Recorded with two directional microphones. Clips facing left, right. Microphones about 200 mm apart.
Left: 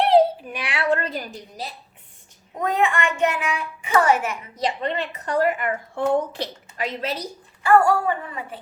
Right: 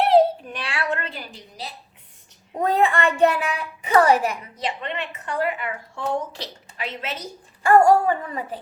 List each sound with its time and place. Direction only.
0.0 s a sound: centre (ahead or behind); by 0.9 s 15° left (ahead or behind)
0.9 s a woman's voice: 35° left (ahead or behind)
2.6 s a woman's voice: 35° right (ahead or behind)
4.6 s a woman's voice: 35° left (ahead or behind)
7.6 s a woman's voice: 40° right (ahead or behind)